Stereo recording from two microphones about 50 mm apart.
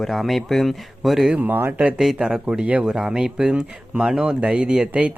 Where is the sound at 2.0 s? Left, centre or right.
Centre.